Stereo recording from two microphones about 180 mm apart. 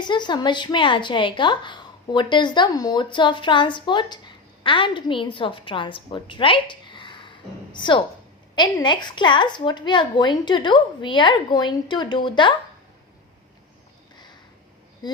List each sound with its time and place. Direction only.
0.0 s a woman's voice: 25° left (ahead or behind)
15.0 s speech: 25° left (ahead or behind)